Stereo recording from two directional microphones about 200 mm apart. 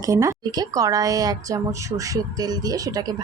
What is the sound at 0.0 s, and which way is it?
A woman's voice, 15° right (ahead or behind).